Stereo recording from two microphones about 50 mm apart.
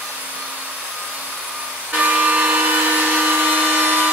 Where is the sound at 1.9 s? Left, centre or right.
Right.